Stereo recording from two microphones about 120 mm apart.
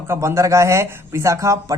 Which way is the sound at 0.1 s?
25° right (ahead or behind).